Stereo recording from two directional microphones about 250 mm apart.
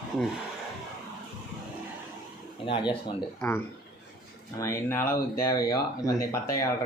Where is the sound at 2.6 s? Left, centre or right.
Centre.